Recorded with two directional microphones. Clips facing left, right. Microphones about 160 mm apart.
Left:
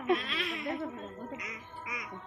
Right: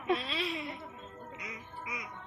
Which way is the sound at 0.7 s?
65° left (ahead or behind).